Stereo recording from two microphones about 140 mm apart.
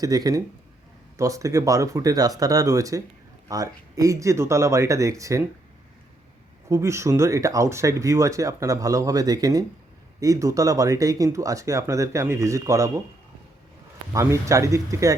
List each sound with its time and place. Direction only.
0.0 s speech: 25° right (ahead or behind)
6.7 s speech: 20° right (ahead or behind)
14.1 s speech: 20° right (ahead or behind)